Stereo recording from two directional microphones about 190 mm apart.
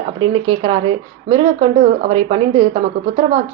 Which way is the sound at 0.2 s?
25° right (ahead or behind).